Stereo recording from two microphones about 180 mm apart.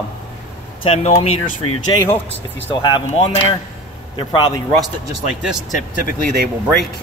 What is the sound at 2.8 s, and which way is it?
Speech, 25° left (ahead or behind).